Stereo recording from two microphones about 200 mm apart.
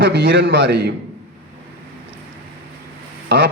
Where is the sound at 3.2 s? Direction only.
60° right (ahead or behind).